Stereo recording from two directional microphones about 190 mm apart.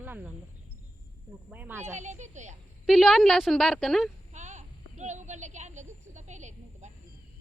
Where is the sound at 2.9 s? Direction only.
Centre (ahead or behind).